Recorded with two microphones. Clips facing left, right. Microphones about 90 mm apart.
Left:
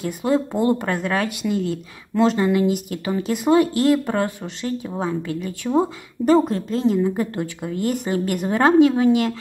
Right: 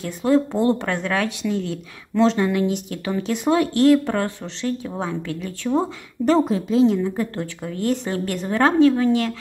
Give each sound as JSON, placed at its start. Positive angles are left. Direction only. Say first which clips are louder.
{"t": 0.0, "sound": "speech", "louder": "right 2 dB", "side_deg": 10}
{"t": 7.0, "sound": "a woman's voice", "louder": "left 2 dB", "side_deg": 10}